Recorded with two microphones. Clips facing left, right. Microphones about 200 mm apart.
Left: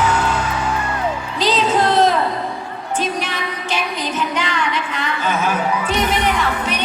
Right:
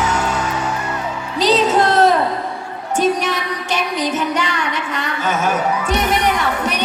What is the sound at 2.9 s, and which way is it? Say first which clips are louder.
Speech: right 6 dB; 45° right (ahead or behind).